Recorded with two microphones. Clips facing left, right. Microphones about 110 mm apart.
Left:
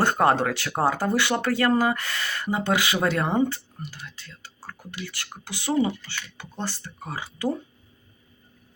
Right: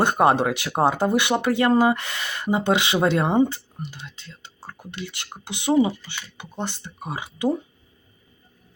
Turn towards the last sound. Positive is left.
turn(degrees=-15)  # may be behind; listen again after turning